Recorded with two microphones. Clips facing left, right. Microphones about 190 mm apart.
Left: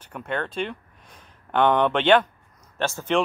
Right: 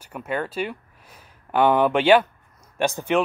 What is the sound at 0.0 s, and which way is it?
Speech, 5° right (ahead or behind).